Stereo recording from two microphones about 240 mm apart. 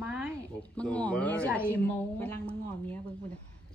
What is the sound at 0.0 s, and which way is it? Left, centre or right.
Music, centre.